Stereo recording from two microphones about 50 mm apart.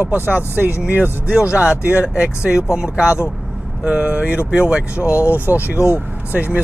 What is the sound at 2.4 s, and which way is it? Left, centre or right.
Speech, centre.